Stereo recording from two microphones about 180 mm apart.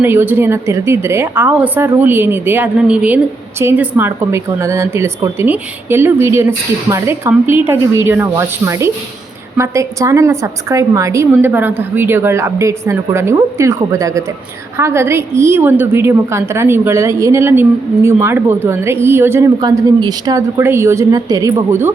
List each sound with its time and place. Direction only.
0.0 s a woman's voice: 10° right (ahead or behind)